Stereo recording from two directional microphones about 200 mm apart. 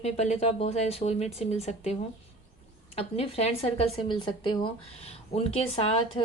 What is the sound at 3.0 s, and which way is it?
Speech, 30° left (ahead or behind).